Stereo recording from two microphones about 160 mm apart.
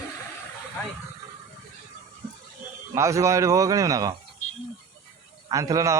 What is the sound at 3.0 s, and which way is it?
A man's voice, 20° right (ahead or behind).